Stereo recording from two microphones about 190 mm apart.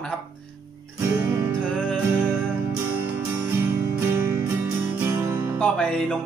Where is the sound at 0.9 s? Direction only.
10° right (ahead or behind).